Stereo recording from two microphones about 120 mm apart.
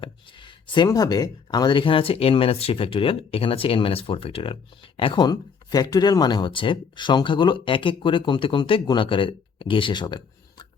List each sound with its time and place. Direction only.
0.0 s speech: 45° left (ahead or behind)